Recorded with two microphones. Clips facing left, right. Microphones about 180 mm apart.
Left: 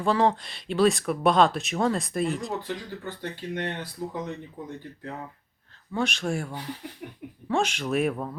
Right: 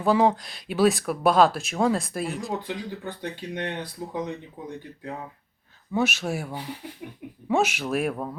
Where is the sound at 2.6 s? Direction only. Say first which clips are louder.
Right 2 dB; 15° right (ahead or behind).